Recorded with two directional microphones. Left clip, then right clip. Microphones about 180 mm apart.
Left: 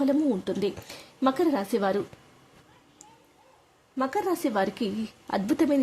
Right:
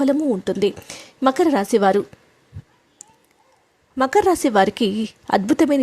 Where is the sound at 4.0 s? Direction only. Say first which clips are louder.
Right 11 dB; 40° right (ahead or behind).